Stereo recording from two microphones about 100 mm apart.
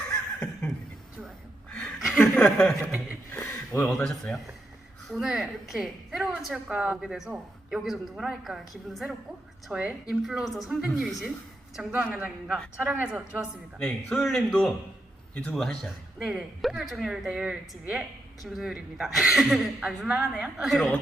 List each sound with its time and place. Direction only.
0.1 s laughter: 5° left (ahead or behind)
2.1 s speech: 5° left (ahead or behind)
2.8 s speech: 15° right (ahead or behind)
3.3 s a sound: 25° left (ahead or behind)
3.8 s a woman's voice: 5° left (ahead or behind)
9.7 s speech: 10° right (ahead or behind)
10.2 s a woman's voice: centre (ahead or behind); by 13.5 s 15° right (ahead or behind)
13.7 s a woman's voice: 5° left (ahead or behind)